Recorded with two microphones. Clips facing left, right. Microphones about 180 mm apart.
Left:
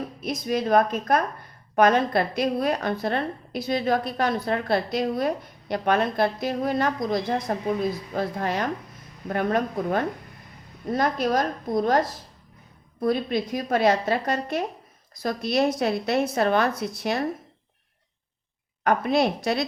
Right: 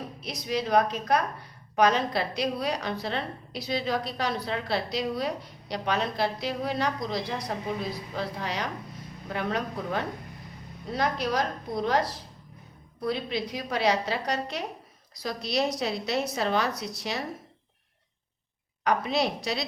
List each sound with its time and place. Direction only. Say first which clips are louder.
0.2 s a woman's voice: left 4 dB; 50° left (ahead or behind)
18.9 s a woman's voice: left 5 dB; 55° left (ahead or behind)